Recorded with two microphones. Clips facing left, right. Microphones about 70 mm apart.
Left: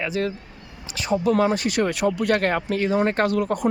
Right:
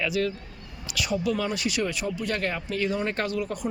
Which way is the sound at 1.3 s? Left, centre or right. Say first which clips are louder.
Left 7 dB; left.